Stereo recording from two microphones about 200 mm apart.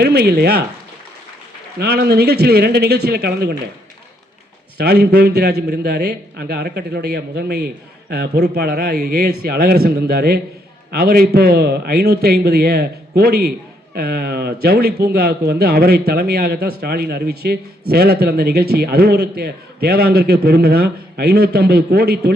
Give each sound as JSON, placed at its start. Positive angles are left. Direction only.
{"t": 0.0, "sound": "a man's voice", "side_deg": -55}
{"t": 1.8, "sound": "a man's voice", "side_deg": -55}
{"t": 4.8, "sound": "a man's voice", "side_deg": -55}